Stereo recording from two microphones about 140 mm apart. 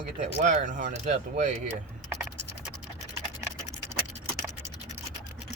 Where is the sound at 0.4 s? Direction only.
60° right (ahead or behind).